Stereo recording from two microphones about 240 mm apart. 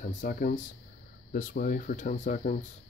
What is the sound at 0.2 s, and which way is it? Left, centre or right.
Speech, left.